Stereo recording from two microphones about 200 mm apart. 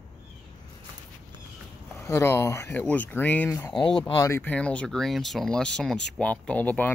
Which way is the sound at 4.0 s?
10° left (ahead or behind).